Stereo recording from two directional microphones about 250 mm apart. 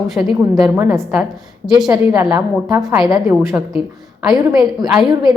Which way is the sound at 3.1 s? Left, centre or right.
Centre.